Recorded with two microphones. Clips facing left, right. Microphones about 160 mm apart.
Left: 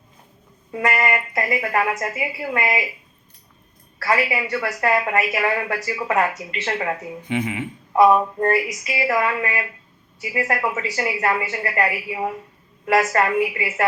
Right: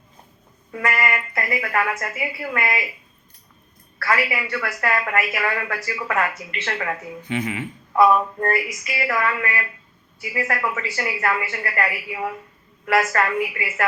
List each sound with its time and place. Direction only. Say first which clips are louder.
1.3 s speech: left 3 dB; 15° left (ahead or behind)
4.1 s a woman's voice: left 2 dB; 25° left (ahead or behind)